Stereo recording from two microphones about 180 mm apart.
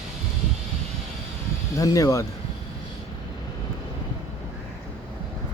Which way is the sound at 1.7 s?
20° left (ahead or behind).